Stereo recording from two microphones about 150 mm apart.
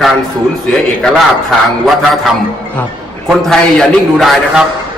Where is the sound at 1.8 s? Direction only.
Centre (ahead or behind).